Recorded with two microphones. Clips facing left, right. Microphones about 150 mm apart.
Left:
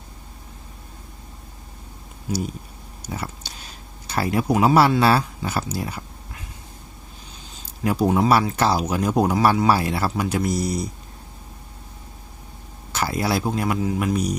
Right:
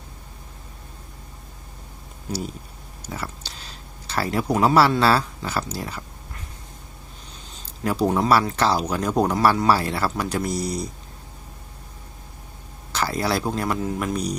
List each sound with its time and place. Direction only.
3.1 s speech: 15° left (ahead or behind)
7.9 s speech: 10° left (ahead or behind)
12.9 s a sound: 10° left (ahead or behind)
13.5 s a man's voice: 5° left (ahead or behind)